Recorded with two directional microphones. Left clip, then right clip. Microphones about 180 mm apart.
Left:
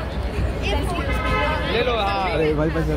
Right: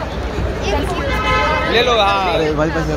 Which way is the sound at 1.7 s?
65° right (ahead or behind).